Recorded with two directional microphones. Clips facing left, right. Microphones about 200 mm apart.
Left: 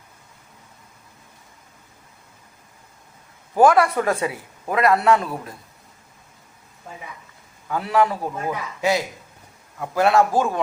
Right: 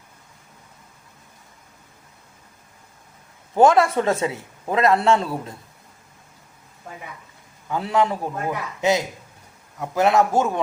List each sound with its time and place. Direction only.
3.5 s a man's voice: 25° right (ahead or behind)
7.7 s a man's voice: 20° right (ahead or behind)